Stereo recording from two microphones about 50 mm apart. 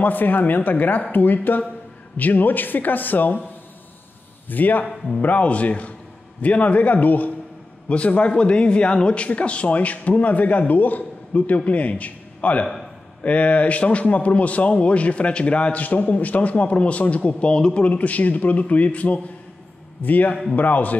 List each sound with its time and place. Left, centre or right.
0.0 s a man's voice: left
4.5 s a man's voice: left
4.8 s speech: centre
5.2 s a man's voice: left
17.8 s a man's voice: left